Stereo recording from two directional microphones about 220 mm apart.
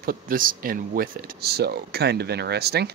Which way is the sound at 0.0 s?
40° right (ahead or behind).